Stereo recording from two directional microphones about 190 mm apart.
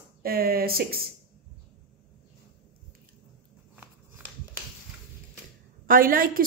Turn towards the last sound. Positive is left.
turn(degrees=-50)  # may be behind; listen again after turning